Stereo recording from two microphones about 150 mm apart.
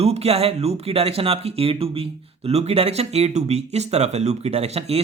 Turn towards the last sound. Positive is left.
turn(degrees=-45)  # may be behind; listen again after turning